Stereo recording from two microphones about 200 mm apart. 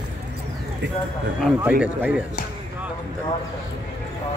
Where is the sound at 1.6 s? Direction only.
10° right (ahead or behind).